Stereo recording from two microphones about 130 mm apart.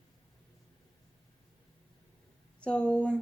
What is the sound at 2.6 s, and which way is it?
Speech, 10° left (ahead or behind).